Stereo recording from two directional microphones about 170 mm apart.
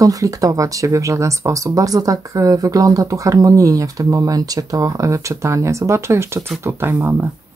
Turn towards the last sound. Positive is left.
turn(degrees=-15)  # may be behind; listen again after turning